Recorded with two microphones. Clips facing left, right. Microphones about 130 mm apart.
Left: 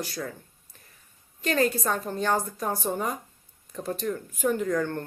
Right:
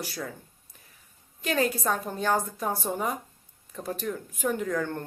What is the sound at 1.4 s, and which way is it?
Speech, 5° right (ahead or behind).